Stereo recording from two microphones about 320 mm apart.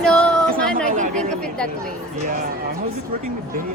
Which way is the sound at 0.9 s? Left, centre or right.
Right.